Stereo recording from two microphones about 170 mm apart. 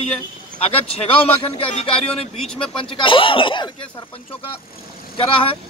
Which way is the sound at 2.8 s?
30° left (ahead or behind).